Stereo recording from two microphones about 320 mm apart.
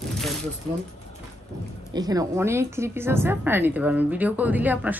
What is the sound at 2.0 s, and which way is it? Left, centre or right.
A woman's voice, centre.